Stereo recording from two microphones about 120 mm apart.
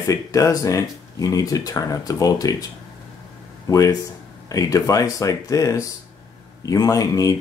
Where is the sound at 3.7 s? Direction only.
30° left (ahead or behind).